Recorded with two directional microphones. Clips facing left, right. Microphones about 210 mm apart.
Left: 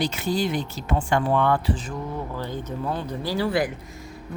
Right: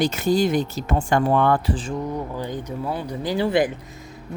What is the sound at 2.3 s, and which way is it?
Speech, 15° right (ahead or behind).